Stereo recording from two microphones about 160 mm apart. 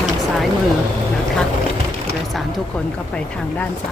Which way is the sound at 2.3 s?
5° left (ahead or behind).